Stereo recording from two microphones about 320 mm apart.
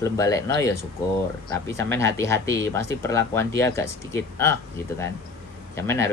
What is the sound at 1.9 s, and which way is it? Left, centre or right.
Speech, centre.